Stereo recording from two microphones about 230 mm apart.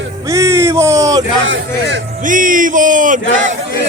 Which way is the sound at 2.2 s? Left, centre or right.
Right.